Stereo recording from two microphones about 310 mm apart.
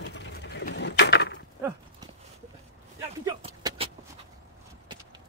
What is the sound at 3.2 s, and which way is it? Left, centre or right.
Vehicle, centre.